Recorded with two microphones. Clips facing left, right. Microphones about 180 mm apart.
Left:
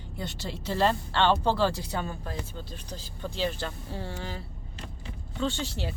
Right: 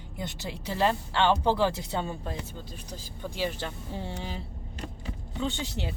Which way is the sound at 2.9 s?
10° right (ahead or behind).